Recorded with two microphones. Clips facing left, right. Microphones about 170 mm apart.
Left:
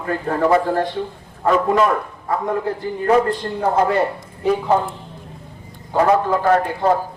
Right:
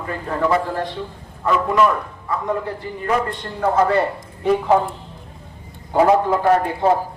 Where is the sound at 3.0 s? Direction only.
35° left (ahead or behind).